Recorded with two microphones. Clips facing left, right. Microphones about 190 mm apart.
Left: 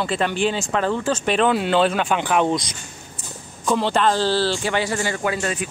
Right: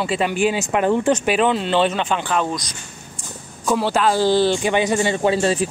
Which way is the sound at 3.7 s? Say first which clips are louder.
Right 1 dB; 5° right (ahead or behind).